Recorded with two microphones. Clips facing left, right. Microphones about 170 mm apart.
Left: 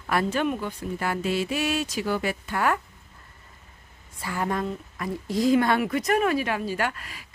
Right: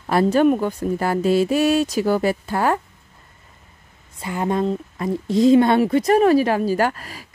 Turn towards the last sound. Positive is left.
turn(degrees=-40)  # may be behind; listen again after turning